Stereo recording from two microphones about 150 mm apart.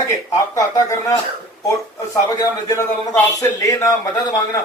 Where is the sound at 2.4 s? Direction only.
25° left (ahead or behind).